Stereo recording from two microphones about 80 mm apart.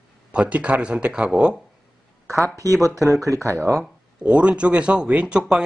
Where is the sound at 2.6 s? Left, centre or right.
Right.